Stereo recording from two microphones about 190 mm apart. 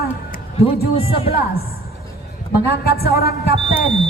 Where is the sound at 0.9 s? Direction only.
30° left (ahead or behind).